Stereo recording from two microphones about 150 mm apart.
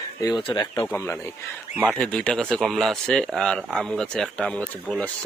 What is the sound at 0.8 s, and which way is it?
Speech, 15° left (ahead or behind).